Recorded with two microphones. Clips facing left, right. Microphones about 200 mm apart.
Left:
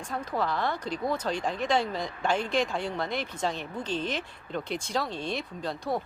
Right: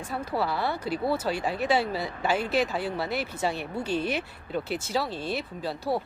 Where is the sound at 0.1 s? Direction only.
10° right (ahead or behind).